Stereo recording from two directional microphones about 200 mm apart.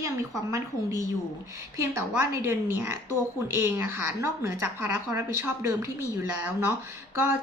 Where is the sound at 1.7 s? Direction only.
15° right (ahead or behind).